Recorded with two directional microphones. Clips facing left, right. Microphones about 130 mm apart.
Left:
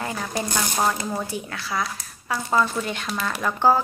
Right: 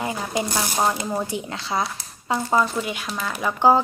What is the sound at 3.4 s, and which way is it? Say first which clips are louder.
Speech: right 2 dB; 15° right (ahead or behind).